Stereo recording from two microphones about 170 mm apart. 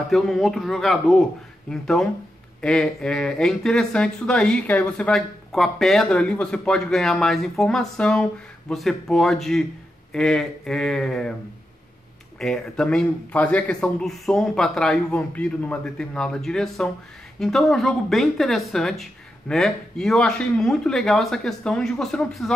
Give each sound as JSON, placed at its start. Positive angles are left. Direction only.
{"t": 0.1, "sound": "speech", "side_deg": 0}
{"t": 12.4, "sound": "speech", "side_deg": 0}